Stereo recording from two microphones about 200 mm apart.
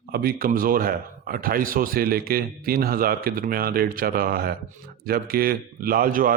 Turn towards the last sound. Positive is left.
turn(degrees=-45)  # may be behind; listen again after turning